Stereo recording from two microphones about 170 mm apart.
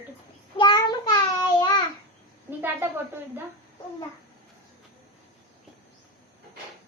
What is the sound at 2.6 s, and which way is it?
Speech, 10° right (ahead or behind).